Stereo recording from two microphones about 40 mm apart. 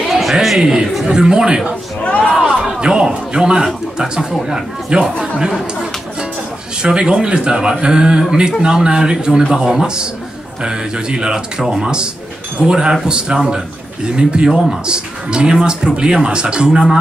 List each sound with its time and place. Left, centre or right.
0.1 s a sound: centre
0.6 s a man's voice: centre
6.8 s speech: centre